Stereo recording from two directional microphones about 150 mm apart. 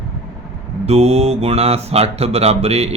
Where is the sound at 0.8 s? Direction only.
45° right (ahead or behind).